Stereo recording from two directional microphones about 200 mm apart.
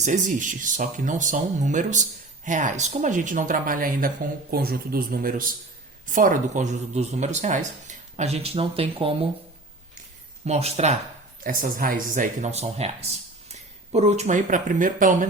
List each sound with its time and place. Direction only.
0.0 s a man's voice: 40° right (ahead or behind)
10.4 s speech: 30° right (ahead or behind)
11.4 s speech: 45° right (ahead or behind)